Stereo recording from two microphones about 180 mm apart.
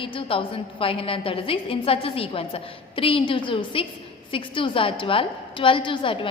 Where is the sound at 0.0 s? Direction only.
30° left (ahead or behind).